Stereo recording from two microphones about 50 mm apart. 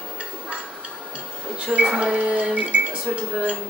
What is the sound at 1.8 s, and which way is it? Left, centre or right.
Music, centre.